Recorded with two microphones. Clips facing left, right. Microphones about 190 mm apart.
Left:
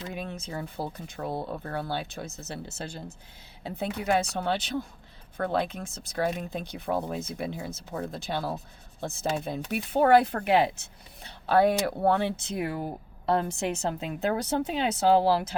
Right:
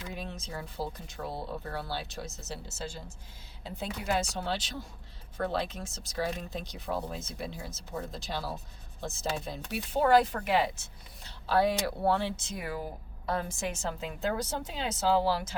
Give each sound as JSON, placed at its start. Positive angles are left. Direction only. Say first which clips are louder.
{"t": 0.1, "sound": "speech", "louder": "left 3 dB", "side_deg": 55}